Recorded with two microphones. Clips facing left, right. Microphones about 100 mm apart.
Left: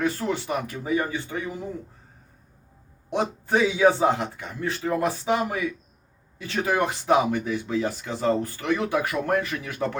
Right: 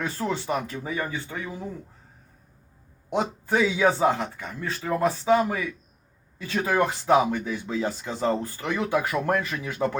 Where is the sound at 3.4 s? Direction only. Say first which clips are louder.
Left 3 dB; 20° left (ahead or behind).